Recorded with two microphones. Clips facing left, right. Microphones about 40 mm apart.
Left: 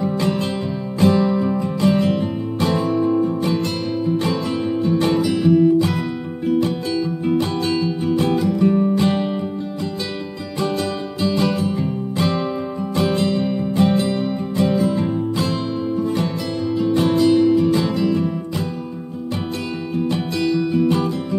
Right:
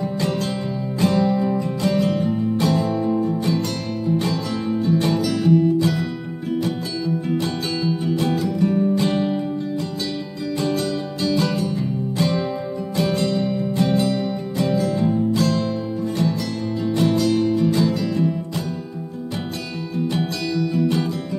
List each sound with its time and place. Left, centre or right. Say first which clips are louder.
0.0 s music: left 3 dB; centre
8.2 s music: left 5 dB; left
10.6 s music: left 2 dB; left
16.8 s music: left 3 dB; left
18.0 s music: left 2 dB; centre
20.5 s music: left 1 dB; left